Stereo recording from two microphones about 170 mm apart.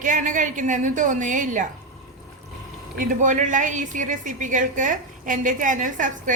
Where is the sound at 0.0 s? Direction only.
50° right (ahead or behind).